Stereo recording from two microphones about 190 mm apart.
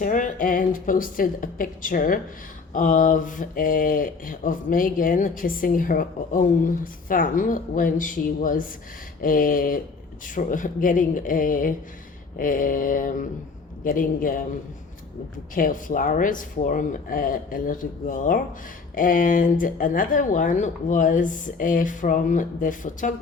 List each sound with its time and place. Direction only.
0.0 s speech: 45° left (ahead or behind)
15.5 s speech: 45° left (ahead or behind)